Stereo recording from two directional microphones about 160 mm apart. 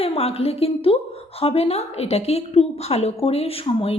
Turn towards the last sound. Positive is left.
turn(degrees=35)  # may be behind; listen again after turning